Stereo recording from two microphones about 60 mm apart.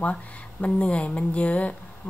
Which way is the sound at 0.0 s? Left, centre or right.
Left.